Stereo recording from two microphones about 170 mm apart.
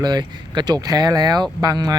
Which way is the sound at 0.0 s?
25° right (ahead or behind).